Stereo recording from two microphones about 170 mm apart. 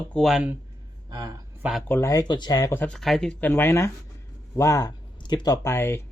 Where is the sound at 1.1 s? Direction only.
25° right (ahead or behind).